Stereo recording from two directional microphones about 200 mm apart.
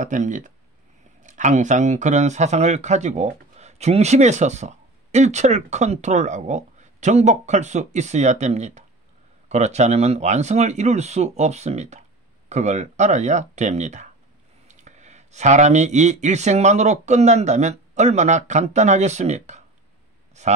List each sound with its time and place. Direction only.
0.0 s speech: 40° right (ahead or behind)